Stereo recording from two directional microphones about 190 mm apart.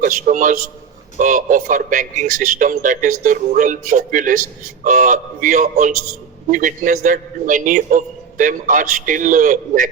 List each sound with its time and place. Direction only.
0.0 s a man's voice: 45° right (ahead or behind)